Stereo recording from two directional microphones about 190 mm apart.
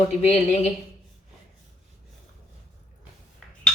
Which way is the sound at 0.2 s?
35° left (ahead or behind).